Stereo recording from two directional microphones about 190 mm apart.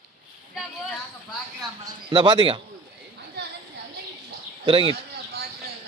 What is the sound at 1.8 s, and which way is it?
Speech, 25° right (ahead or behind).